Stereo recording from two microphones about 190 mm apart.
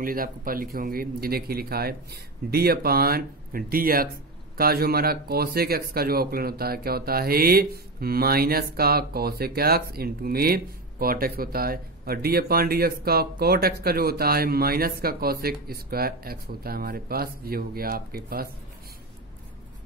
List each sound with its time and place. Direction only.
0.0 s speech: 50° right (ahead or behind)